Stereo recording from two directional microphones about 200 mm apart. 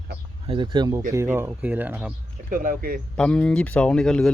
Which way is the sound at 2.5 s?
45° right (ahead or behind).